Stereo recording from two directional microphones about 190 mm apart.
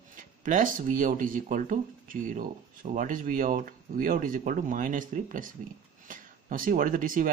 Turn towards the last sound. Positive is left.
turn(degrees=-45)  # may be behind; listen again after turning